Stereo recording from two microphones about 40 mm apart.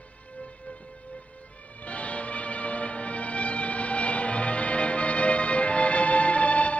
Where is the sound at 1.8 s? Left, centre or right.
Left.